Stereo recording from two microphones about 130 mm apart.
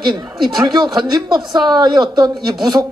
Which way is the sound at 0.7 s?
35° right (ahead or behind).